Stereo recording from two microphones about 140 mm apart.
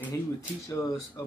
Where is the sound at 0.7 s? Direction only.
25° left (ahead or behind).